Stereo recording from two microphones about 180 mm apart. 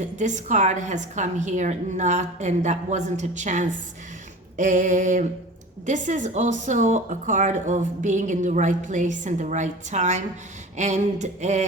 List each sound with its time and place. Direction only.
0.2 s a woman's voice: 40° right (ahead or behind)